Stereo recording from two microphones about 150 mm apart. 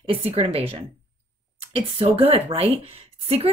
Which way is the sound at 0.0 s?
40° right (ahead or behind).